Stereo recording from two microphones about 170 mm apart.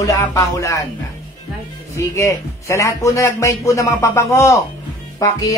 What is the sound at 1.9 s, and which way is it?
A man's voice, 15° left (ahead or behind).